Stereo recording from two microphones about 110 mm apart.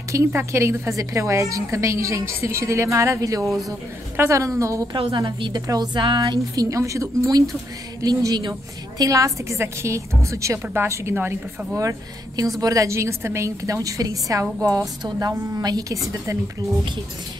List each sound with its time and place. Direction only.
0.1 s a woman's voice: 25° right (ahead or behind)
5.1 s a woman's voice: 40° right (ahead or behind)